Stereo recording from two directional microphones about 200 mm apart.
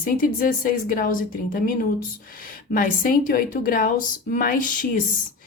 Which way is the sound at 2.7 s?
45° left (ahead or behind).